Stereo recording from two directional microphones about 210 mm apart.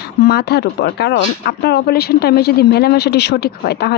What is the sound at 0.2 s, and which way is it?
Speech, 50° left (ahead or behind).